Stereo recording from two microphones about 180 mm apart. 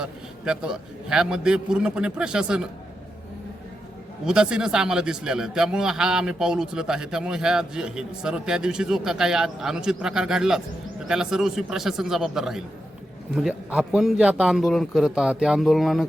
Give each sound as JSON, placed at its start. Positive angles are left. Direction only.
{"t": 0.0, "sound": "a man's voice", "side_deg": -5}
{"t": 4.3, "sound": "a man's voice", "side_deg": -5}